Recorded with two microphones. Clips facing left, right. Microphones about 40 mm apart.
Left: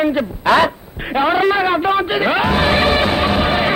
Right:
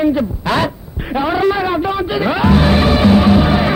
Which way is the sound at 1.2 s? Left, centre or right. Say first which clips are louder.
Left 1 dB; left.